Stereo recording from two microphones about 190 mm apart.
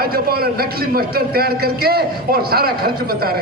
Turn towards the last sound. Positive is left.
turn(degrees=-55)  # may be behind; listen again after turning